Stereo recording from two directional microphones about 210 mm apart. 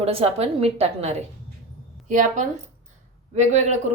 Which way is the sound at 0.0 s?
30° right (ahead or behind).